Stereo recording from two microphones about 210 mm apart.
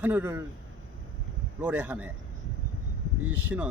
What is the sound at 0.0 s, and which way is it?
Speech, 10° right (ahead or behind).